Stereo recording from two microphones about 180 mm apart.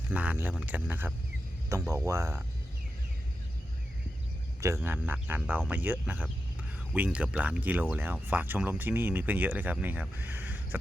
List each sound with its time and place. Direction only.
0.1 s speech: 10° right (ahead or behind)
4.6 s speech: 15° right (ahead or behind)